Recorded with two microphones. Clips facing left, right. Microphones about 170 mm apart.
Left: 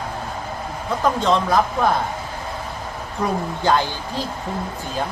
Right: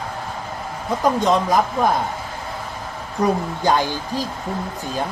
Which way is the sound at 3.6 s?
15° right (ahead or behind).